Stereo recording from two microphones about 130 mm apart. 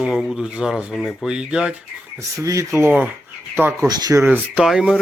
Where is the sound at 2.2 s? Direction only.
25° right (ahead or behind).